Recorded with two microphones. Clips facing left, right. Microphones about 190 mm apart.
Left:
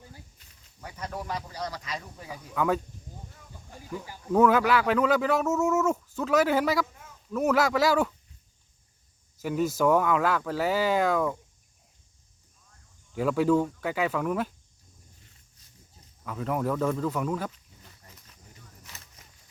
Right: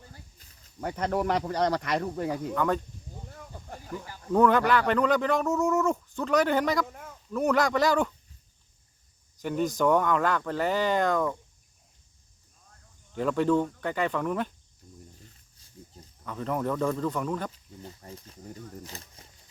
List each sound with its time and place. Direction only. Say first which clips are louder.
0.8 s speech: right 9 dB; 60° right (ahead or behind)
2.6 s speech: left 2 dB; 5° left (ahead or behind)
3.9 s speech: left 1 dB; 10° left (ahead or behind)
6.8 s speech: right 8 dB; 60° right (ahead or behind)
7.3 s speech: even; 5° left (ahead or behind)
9.4 s speech: left 1 dB; 5° left (ahead or behind)
13.1 s speech: left 1 dB; 5° left (ahead or behind)
16.2 s speech: left 1 dB; 5° left (ahead or behind)
17.5 s speech: right 12 dB; 30° right (ahead or behind)